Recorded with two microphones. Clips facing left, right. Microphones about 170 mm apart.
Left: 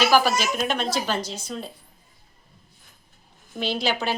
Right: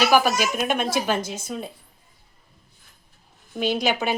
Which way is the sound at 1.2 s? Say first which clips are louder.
Right 2 dB; 50° right (ahead or behind).